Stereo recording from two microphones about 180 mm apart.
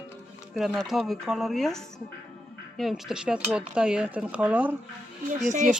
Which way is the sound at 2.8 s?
Centre (ahead or behind).